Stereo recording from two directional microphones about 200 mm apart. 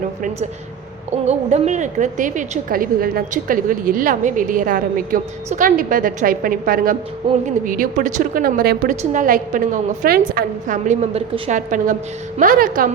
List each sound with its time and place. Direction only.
1.1 s a woman's voice: 30° right (ahead or behind)